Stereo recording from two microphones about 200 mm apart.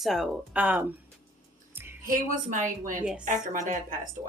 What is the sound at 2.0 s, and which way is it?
A woman's voice, 40° right (ahead or behind).